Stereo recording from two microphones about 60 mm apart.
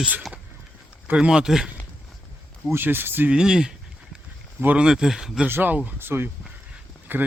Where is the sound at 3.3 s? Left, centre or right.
Centre.